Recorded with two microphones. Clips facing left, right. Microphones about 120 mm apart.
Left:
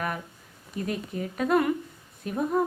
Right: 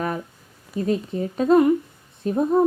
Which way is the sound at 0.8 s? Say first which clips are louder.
Right 8 dB; 30° right (ahead or behind).